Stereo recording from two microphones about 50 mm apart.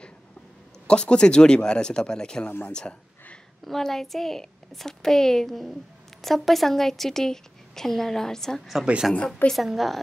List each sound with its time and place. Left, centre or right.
0.8 s a woman's voice: left
3.6 s a woman's voice: centre